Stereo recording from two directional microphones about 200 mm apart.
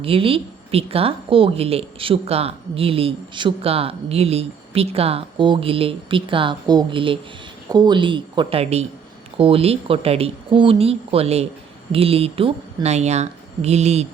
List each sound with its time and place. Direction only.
0.0 s a woman's voice: 30° right (ahead or behind)